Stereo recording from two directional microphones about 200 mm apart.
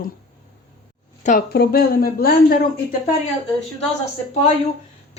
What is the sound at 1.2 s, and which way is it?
Speech, 45° left (ahead or behind).